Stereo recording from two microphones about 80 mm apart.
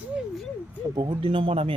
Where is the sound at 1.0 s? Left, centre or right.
Right.